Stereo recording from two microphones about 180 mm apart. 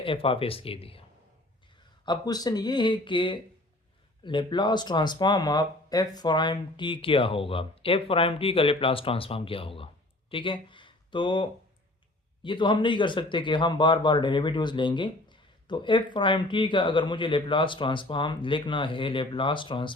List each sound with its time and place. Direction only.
0.0 s speech: 30° left (ahead or behind)
2.0 s speech: 20° left (ahead or behind)